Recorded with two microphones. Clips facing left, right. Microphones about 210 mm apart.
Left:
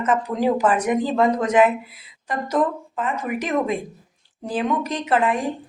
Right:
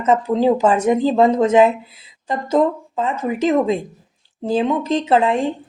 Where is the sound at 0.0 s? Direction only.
25° right (ahead or behind).